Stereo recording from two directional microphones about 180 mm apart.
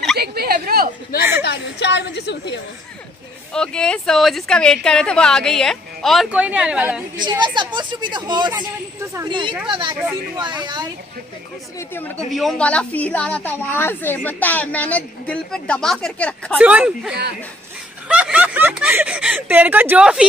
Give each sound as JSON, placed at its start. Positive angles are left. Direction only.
{"t": 0.2, "sound": "a sound", "side_deg": -60}
{"t": 1.4, "sound": "speech", "side_deg": 70}
{"t": 3.5, "sound": "a woman's voice", "side_deg": 5}
{"t": 7.2, "sound": "a woman's voice", "side_deg": -25}
{"t": 12.3, "sound": "a woman's voice", "side_deg": 0}
{"t": 16.5, "sound": "speech", "side_deg": -5}